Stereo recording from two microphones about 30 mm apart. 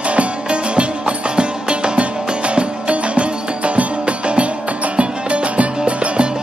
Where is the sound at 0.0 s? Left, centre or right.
Right.